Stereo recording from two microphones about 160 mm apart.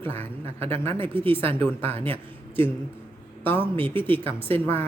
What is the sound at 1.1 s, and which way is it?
Speech, 35° right (ahead or behind).